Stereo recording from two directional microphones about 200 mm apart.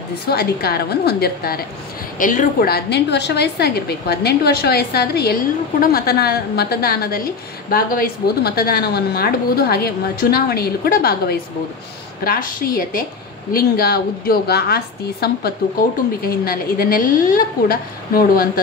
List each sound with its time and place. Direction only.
0.3 s a woman's voice: 50° left (ahead or behind)
2.1 s a woman's voice: 40° left (ahead or behind)